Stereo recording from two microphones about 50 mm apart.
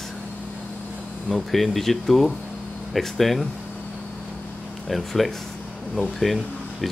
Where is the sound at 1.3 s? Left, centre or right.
Centre.